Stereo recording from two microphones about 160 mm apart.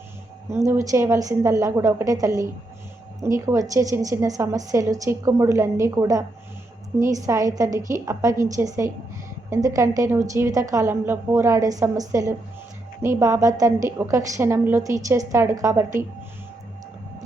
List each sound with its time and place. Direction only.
0.5 s a woman's voice: 15° right (ahead or behind)